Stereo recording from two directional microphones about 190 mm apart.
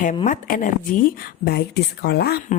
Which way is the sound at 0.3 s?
45° left (ahead or behind).